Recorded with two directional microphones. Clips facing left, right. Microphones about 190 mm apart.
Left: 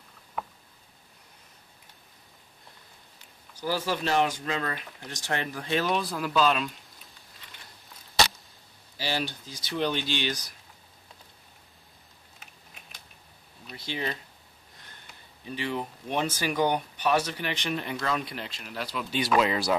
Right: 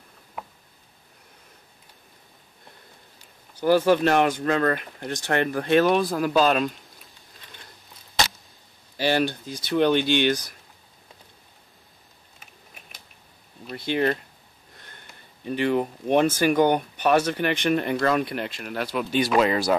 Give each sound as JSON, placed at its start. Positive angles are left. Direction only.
{"t": 3.5, "sound": "speech", "side_deg": -55}
{"t": 8.9, "sound": "speech", "side_deg": -60}
{"t": 13.7, "sound": "speech", "side_deg": -55}
{"t": 15.4, "sound": "speech", "side_deg": -55}